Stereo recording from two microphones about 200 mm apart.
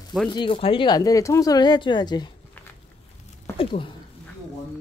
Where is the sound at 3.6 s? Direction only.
25° left (ahead or behind).